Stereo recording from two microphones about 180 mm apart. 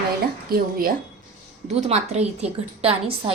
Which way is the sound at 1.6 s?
40° right (ahead or behind).